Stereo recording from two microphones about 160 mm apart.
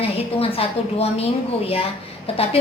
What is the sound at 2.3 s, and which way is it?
Speech, 35° left (ahead or behind).